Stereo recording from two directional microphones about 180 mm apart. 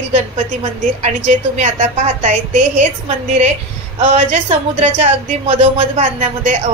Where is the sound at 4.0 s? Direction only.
35° right (ahead or behind).